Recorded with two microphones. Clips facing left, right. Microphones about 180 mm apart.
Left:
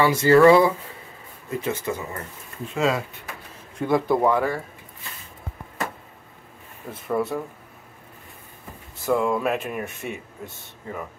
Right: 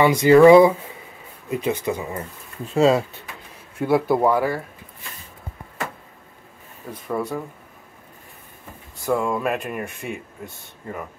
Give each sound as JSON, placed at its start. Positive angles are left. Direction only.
{"t": 0.0, "sound": "speech", "side_deg": -15}
{"t": 2.7, "sound": "speech", "side_deg": -30}
{"t": 3.7, "sound": "speech", "side_deg": -5}
{"t": 7.1, "sound": "speech", "side_deg": 0}
{"t": 9.0, "sound": "speech", "side_deg": 0}